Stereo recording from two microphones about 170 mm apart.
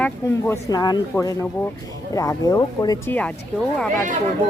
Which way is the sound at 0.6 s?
20° left (ahead or behind).